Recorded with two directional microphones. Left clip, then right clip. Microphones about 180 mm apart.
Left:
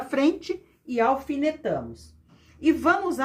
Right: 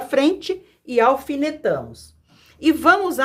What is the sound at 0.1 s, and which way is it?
Speech, 35° right (ahead or behind).